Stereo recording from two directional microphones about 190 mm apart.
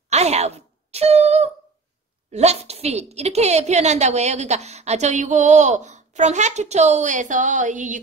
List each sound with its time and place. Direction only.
0.1 s a woman's voice: 35° right (ahead or behind)